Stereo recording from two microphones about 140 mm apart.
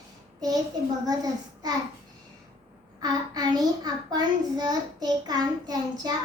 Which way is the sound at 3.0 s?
30° right (ahead or behind).